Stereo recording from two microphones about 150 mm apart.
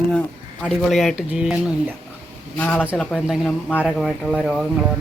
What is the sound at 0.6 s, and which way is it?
Speech, centre (ahead or behind).